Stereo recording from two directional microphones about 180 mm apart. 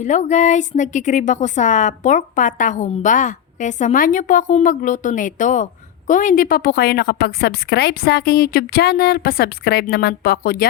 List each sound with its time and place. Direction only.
0.0 s a woman's voice: 40° left (ahead or behind)